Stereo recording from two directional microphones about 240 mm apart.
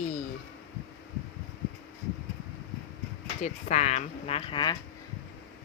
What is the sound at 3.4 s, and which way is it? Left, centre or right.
Speech, left.